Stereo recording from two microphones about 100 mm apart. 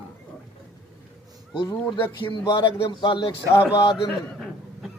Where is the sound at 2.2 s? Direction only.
50° left (ahead or behind).